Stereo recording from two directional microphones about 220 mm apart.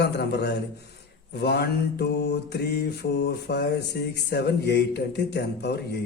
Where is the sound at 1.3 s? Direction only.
45° left (ahead or behind).